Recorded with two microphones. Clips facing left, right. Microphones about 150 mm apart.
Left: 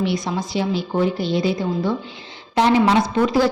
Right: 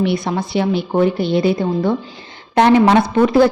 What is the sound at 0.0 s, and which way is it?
A woman's voice, 60° right (ahead or behind).